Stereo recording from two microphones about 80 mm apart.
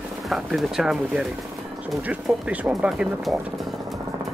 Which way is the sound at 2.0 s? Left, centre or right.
Centre.